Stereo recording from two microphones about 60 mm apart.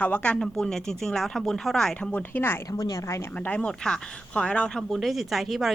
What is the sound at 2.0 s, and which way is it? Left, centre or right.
Speech, left.